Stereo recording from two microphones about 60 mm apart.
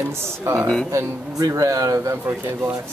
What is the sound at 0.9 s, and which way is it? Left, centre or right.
Speech, right.